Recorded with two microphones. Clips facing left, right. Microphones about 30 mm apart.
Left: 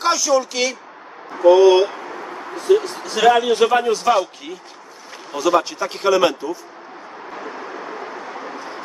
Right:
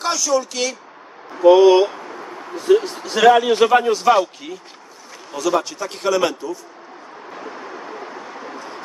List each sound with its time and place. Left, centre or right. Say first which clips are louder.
0.0 s a man's voice: left 2 dB; centre
1.4 s speech: right 1 dB; centre
1.9 s a sound: left 2 dB; centre
2.5 s a man's voice: right 1 dB; centre
5.3 s a man's voice: left 2 dB; centre
7.2 s vehicle: left 2 dB; centre